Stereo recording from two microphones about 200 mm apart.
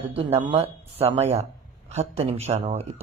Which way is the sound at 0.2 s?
30° right (ahead or behind).